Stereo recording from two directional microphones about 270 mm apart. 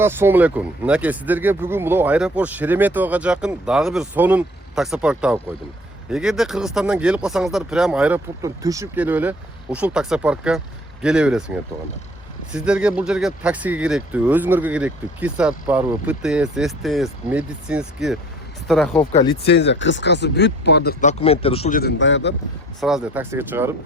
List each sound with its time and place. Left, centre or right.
0.0 s speech: centre
19.5 s speech: left
21.8 s speech: left
22.8 s speech: centre